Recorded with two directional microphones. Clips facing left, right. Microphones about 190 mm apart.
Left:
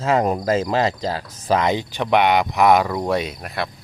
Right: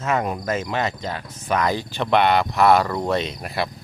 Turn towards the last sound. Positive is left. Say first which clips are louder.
# even
turn(degrees=0)  # may be behind; listen again after turning